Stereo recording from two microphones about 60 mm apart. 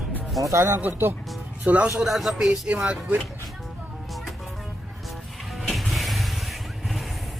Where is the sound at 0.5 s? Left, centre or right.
Right.